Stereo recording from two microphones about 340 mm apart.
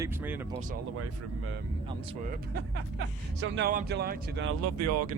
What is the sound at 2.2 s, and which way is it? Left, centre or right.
Speech, right.